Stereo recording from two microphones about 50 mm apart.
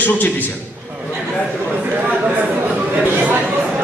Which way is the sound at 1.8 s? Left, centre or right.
Right.